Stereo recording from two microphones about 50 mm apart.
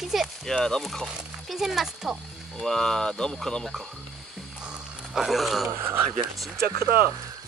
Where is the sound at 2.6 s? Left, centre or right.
Centre.